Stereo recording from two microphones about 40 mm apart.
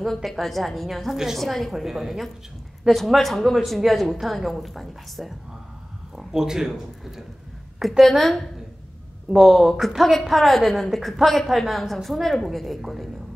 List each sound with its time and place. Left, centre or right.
0.3 s a woman's voice: centre
2.9 s a man's voice: centre
3.2 s a woman's voice: centre
6.1 s speech: centre
8.0 s a woman's voice: centre
9.4 s a woman's voice: centre